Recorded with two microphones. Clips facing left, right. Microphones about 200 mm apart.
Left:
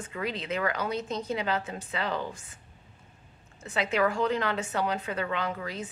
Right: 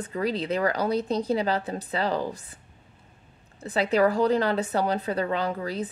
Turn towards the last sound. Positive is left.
turn(degrees=-35)  # may be behind; listen again after turning